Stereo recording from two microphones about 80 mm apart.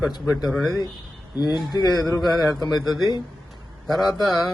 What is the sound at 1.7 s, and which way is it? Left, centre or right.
Speech, left.